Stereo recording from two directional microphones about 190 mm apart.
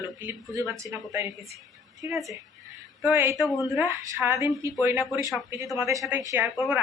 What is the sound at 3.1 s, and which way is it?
Speech, 10° right (ahead or behind).